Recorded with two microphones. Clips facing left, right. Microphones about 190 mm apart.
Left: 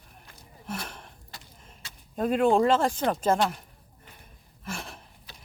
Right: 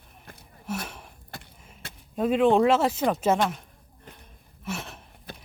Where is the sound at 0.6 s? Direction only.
5° right (ahead or behind).